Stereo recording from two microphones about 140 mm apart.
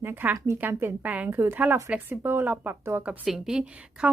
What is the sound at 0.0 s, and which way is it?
A woman's voice, 15° right (ahead or behind).